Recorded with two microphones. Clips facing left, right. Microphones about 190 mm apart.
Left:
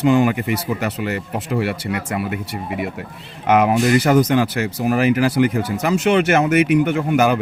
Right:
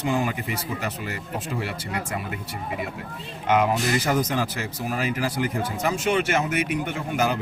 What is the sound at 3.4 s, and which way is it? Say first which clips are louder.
A man's voice: left 6 dB; 70° left (ahead or behind).